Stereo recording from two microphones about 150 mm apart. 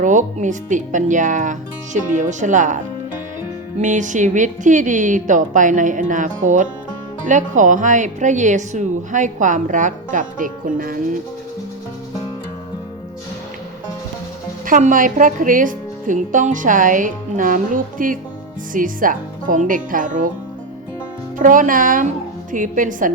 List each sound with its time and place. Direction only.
0.0 s speech: 55° right (ahead or behind)
3.8 s speech: 55° right (ahead or behind)
14.7 s speech: 60° right (ahead or behind)
21.3 s speech: 60° right (ahead or behind)